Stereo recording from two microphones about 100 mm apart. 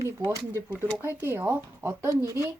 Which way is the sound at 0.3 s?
25° right (ahead or behind).